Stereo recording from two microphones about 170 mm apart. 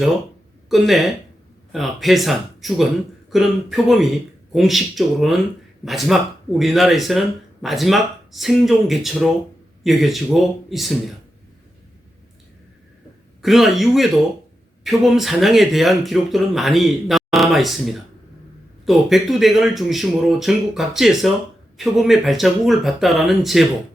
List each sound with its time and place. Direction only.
0.7 s speech: centre (ahead or behind)
13.4 s speech: centre (ahead or behind)
18.9 s speech: centre (ahead or behind)